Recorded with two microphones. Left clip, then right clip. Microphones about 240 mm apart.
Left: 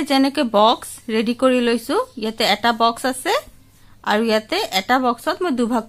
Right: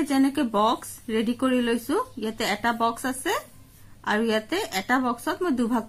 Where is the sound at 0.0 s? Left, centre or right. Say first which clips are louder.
Left 6 dB; left.